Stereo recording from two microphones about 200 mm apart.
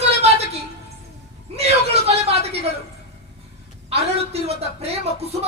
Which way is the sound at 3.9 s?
30° right (ahead or behind).